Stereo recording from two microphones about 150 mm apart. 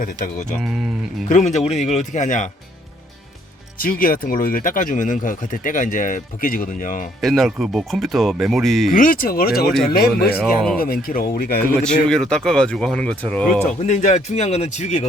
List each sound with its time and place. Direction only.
0.6 s speech: centre (ahead or behind)
1.3 s speech: 50° left (ahead or behind)
3.8 s speech: 70° left (ahead or behind)
7.2 s speech: centre (ahead or behind)
8.9 s speech: 65° left (ahead or behind); by 10.3 s 90° left
10.8 s speech: 80° left
11.8 s speech: 5° left (ahead or behind)
13.8 s speech: 50° left (ahead or behind)